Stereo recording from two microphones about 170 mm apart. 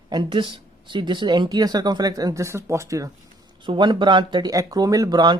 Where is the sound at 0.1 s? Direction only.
30° right (ahead or behind).